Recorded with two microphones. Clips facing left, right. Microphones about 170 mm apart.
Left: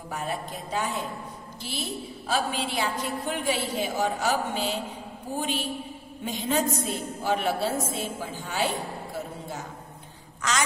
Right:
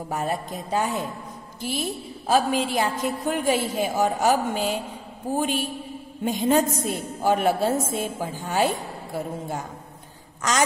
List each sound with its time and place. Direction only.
0.1 s a woman's voice: 40° right (ahead or behind)